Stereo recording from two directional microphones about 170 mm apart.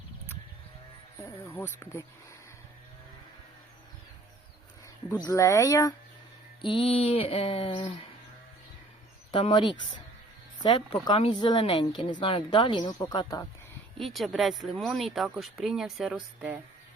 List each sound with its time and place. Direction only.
1.2 s speech: 10° left (ahead or behind)
5.2 s speech: 20° left (ahead or behind)
6.6 s speech: 30° left (ahead or behind)
9.3 s speech: 30° left (ahead or behind)
14.0 s speech: centre (ahead or behind)